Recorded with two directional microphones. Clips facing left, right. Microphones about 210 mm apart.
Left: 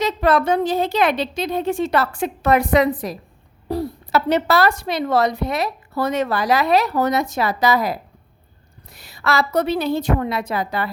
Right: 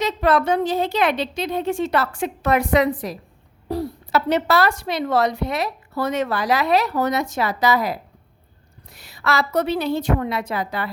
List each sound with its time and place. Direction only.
0.0 s speech: 40° left (ahead or behind)